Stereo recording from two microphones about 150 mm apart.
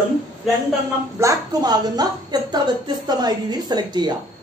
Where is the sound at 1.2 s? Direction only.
25° right (ahead or behind).